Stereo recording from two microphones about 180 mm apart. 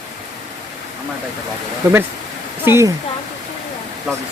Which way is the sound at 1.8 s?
15° right (ahead or behind).